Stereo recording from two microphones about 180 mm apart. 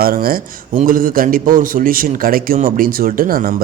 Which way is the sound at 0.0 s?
55° right (ahead or behind).